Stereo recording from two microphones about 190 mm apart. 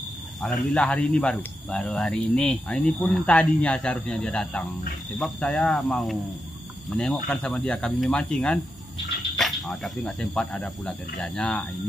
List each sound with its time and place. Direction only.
0.4 s speech: centre (ahead or behind)